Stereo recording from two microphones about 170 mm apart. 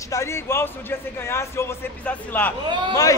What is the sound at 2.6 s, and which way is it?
Speech, 25° right (ahead or behind).